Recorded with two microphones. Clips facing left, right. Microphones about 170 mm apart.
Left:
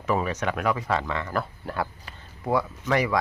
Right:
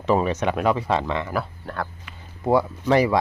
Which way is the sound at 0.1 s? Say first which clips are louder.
Right 5 dB; 25° right (ahead or behind).